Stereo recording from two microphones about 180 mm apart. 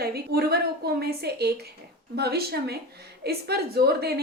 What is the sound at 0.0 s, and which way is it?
A woman's voice, 60° right (ahead or behind).